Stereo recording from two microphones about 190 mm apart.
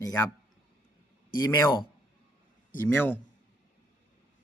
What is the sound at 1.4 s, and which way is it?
Speech, 20° left (ahead or behind).